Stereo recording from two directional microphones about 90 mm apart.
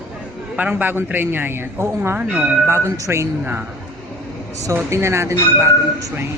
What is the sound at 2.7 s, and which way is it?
Speech, 30° right (ahead or behind).